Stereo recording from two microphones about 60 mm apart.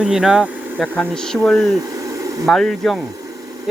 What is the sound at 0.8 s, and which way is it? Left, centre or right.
Speech, centre.